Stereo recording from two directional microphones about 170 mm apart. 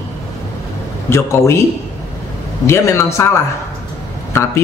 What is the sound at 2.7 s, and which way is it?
Speech, 15° left (ahead or behind).